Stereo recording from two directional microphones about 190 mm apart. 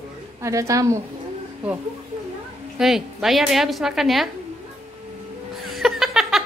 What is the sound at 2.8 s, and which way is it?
A woman's voice, centre (ahead or behind).